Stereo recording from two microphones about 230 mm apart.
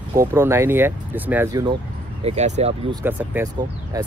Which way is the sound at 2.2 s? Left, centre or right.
Right.